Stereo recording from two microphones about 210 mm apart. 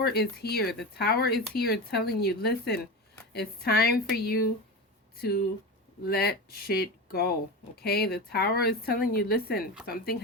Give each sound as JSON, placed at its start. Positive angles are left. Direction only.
{"t": 0.0, "sound": "a woman's voice", "side_deg": 50}